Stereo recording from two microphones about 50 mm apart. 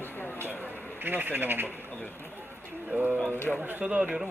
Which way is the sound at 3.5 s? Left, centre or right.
Centre.